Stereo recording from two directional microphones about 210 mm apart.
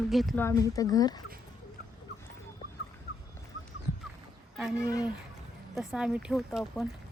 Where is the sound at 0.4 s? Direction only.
15° left (ahead or behind).